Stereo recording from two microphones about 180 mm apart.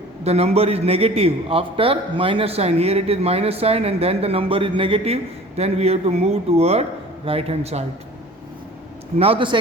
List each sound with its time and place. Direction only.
0.3 s a man's voice: 35° right (ahead or behind)
9.1 s a man's voice: 30° right (ahead or behind)